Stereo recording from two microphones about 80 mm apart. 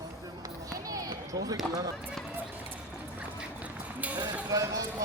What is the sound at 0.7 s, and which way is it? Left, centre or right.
Run, right.